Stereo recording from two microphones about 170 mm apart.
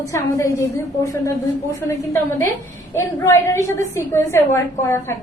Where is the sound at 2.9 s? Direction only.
15° left (ahead or behind).